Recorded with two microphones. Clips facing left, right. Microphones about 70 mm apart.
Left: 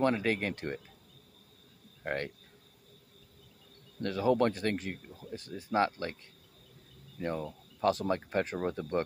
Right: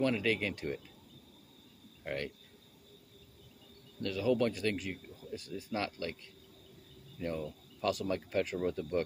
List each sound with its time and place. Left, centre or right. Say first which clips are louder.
0.0 s speech: left 2 dB; left
2.0 s speech: left 3 dB; left
4.0 s speech: left 3 dB; left
7.2 s speech: left 2 dB; left